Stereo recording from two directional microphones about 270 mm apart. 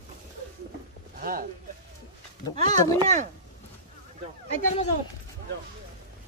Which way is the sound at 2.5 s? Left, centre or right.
Right.